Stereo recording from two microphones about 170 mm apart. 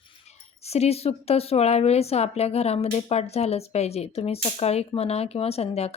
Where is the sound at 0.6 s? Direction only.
40° left (ahead or behind).